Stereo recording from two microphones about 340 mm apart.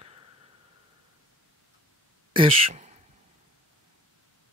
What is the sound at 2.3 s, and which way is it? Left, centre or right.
Speech, centre.